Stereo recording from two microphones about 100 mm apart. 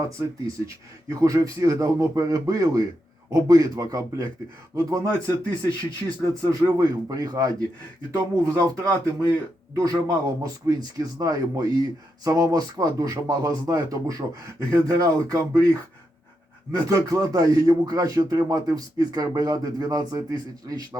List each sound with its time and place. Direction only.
1.2 s speech: 35° right (ahead or behind)
16.7 s speech: 35° right (ahead or behind)